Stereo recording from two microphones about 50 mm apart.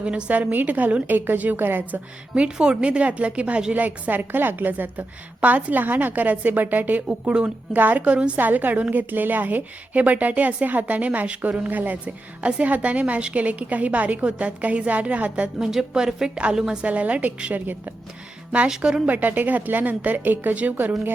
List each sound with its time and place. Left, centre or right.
0.0 s a woman's voice: right
2.3 s a woman's voice: right
7.3 s a woman's voice: centre
7.7 s a woman's voice: right
8.0 s a woman's voice: right
8.4 s a woman's voice: right
15.5 s a woman's voice: centre
16.3 s a woman's voice: centre
16.8 s a woman's voice: right
18.8 s a woman's voice: centre
19.0 s a woman's voice: right